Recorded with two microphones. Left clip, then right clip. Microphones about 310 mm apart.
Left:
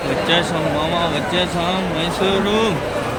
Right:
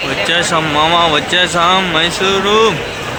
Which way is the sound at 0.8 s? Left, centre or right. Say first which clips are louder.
Right 12 dB; centre.